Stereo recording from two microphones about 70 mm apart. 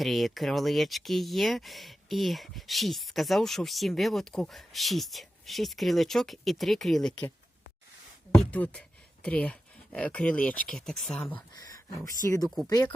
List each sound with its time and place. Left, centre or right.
0.0 s speech: centre
8.4 s speech: left
10.7 s speech: centre
11.5 s speech: left
12.6 s speech: left